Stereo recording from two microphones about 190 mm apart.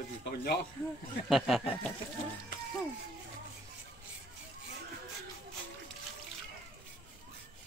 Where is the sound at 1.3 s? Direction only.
Centre (ahead or behind).